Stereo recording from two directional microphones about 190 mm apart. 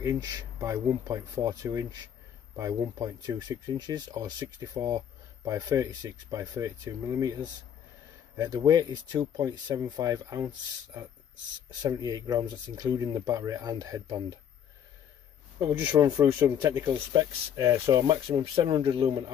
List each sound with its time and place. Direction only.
0.0 s speech: 20° right (ahead or behind)
8.4 s speech: 20° right (ahead or behind)
15.6 s speech: 25° right (ahead or behind)